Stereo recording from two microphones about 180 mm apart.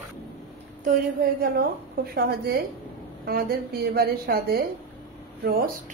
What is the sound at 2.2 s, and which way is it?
A woman's voice, 60° right (ahead or behind).